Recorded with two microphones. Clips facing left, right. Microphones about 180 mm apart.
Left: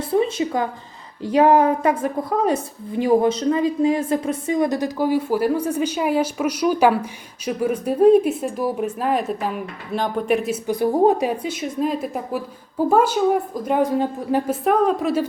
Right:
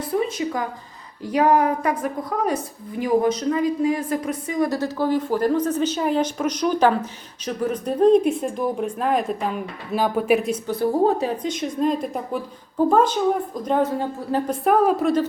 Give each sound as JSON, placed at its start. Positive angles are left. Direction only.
{"t": 0.1, "sound": "a woman's voice", "side_deg": 25}
{"t": 10.7, "sound": "a woman's voice", "side_deg": 15}